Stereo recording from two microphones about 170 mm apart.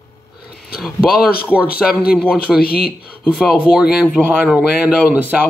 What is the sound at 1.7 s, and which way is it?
Speech, 65° left (ahead or behind).